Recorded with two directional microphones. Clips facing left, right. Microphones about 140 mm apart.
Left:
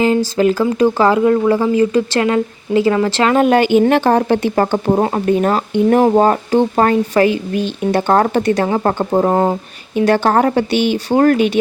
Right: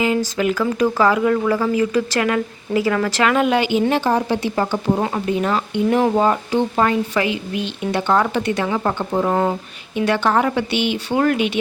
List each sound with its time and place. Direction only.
0.0 s speech: 35° left (ahead or behind)
3.4 s a woman's voice: 50° left (ahead or behind)